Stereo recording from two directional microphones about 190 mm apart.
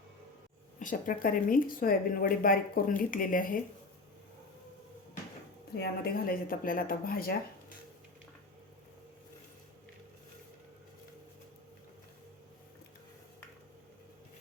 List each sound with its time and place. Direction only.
0.8 s speech: 45° left (ahead or behind)
5.7 s speech: 55° left (ahead or behind)